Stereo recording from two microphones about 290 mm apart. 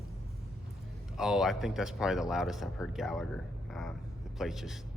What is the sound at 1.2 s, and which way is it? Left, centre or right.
Speech, centre.